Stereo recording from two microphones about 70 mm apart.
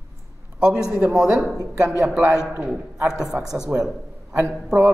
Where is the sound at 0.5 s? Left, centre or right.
Centre.